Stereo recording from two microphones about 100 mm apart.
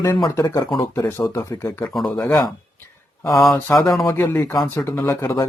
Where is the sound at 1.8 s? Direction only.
Centre (ahead or behind).